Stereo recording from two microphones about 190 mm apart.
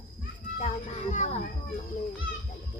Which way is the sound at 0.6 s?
35° left (ahead or behind).